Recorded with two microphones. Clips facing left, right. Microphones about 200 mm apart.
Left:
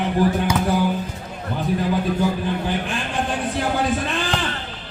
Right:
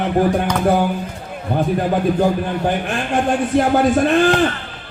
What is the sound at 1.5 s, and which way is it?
Music, 50° right (ahead or behind).